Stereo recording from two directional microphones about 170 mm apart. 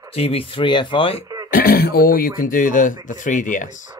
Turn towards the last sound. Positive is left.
turn(degrees=50)  # may be behind; listen again after turning